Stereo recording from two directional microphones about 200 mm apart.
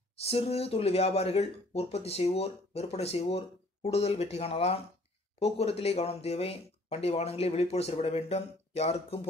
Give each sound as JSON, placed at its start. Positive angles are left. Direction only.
{"t": 0.2, "sound": "speech", "side_deg": 30}